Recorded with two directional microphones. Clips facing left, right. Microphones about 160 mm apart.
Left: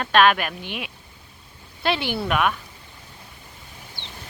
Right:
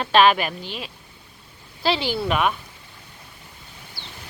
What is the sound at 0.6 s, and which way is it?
Speech, 60° left (ahead or behind).